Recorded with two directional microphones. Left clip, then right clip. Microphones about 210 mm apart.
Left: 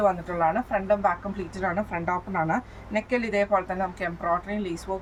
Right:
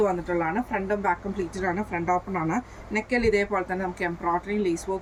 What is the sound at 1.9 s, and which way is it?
A woman's voice, 15° left (ahead or behind).